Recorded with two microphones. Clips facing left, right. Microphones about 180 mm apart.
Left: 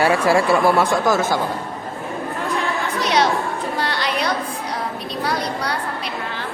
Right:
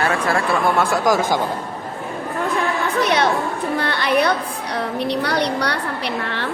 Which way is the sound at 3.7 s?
55° right (ahead or behind).